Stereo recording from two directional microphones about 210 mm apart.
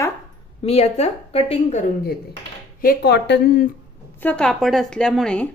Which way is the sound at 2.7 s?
45° left (ahead or behind).